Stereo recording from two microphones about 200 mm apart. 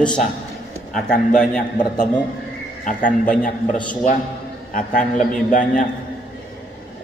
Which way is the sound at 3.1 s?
5° left (ahead or behind).